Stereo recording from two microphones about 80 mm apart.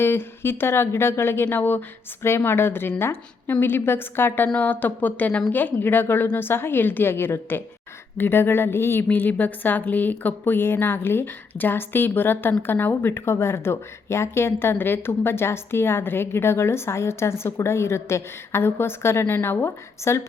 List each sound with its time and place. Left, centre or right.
0.0 s a woman's voice: left